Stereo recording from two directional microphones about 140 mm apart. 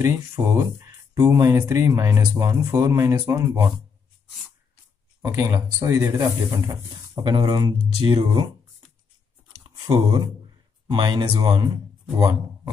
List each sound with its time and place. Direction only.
0.0 s speech: 20° right (ahead or behind)
5.2 s speech: 20° right (ahead or behind); by 8.5 s 35° right (ahead or behind)
9.6 s a sound: 30° right (ahead or behind)
10.9 s speech: 30° right (ahead or behind)